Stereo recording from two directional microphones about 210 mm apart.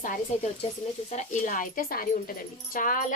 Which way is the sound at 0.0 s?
40° left (ahead or behind).